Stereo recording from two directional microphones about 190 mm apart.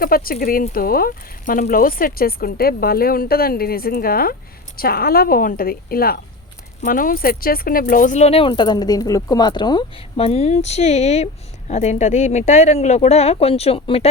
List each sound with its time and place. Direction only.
0.0 s speech: 50° left (ahead or behind); by 14.1 s 30° left (ahead or behind)